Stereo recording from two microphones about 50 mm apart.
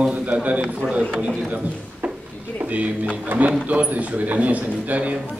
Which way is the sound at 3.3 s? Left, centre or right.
Right.